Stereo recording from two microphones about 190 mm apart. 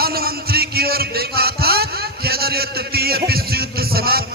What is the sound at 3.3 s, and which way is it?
Music, 55° right (ahead or behind).